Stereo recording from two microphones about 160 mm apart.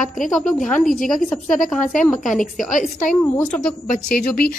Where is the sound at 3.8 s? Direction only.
65° left (ahead or behind).